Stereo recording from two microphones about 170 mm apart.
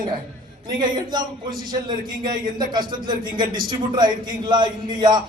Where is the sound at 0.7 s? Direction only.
25° right (ahead or behind).